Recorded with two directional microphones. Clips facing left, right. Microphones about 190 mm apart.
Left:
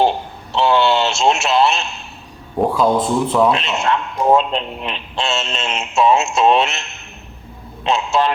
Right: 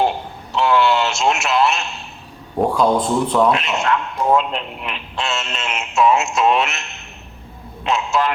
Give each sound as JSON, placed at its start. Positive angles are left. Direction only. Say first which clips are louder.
{"t": 0.5, "sound": "radio", "louder": "left 1 dB", "side_deg": 30}
{"t": 2.6, "sound": "speech", "louder": "left 1 dB", "side_deg": 0}
{"t": 3.5, "sound": "speech", "louder": "even", "side_deg": 30}
{"t": 7.9, "sound": "speech", "louder": "left 2 dB", "side_deg": 30}